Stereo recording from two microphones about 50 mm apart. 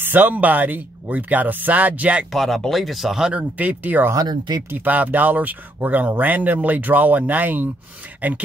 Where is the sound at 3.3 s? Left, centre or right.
Right.